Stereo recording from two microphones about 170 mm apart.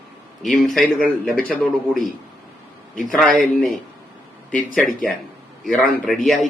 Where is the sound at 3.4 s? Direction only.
Centre (ahead or behind).